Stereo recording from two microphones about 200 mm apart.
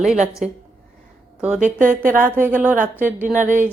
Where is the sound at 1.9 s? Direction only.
10° right (ahead or behind).